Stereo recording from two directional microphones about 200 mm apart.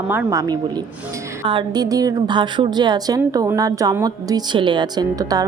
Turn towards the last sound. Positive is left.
turn(degrees=-20)  # may be behind; listen again after turning